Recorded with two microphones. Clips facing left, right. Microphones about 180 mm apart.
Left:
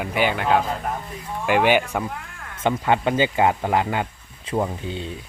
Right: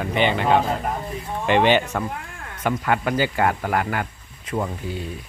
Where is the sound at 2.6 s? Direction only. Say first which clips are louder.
Left 2 dB; 25° left (ahead or behind).